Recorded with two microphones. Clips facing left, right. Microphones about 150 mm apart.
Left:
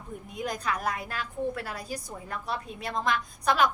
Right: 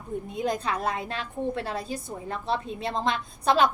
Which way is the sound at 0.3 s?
25° right (ahead or behind).